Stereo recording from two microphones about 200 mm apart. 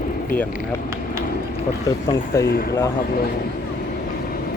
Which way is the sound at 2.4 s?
50° left (ahead or behind).